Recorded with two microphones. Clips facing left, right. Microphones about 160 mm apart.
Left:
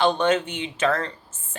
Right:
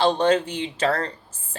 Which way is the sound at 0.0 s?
35° right (ahead or behind).